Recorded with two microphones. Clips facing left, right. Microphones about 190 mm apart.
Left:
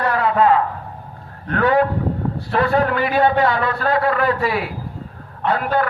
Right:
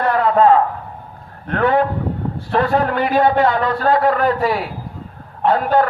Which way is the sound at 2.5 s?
40° right (ahead or behind).